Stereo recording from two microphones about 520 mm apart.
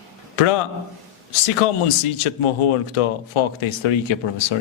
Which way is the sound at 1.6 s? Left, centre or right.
Left.